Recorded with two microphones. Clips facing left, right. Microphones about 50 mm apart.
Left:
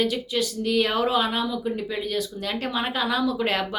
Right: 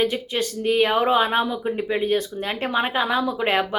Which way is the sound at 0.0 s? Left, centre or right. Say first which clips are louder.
Right 2 dB; right.